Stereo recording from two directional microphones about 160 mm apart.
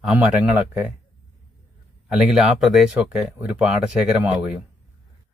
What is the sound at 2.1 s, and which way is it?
Speech, 5° right (ahead or behind).